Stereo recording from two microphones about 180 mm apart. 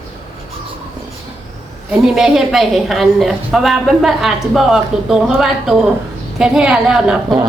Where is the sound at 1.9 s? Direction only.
5° right (ahead or behind).